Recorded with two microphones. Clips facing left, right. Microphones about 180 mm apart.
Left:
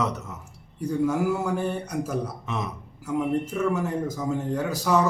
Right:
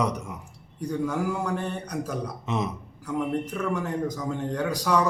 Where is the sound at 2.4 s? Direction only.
20° right (ahead or behind).